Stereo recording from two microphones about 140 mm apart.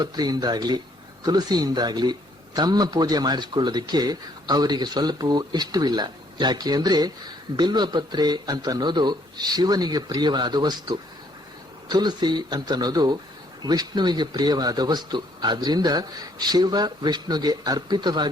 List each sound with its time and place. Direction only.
0.0 s a man's voice: 30° right (ahead or behind)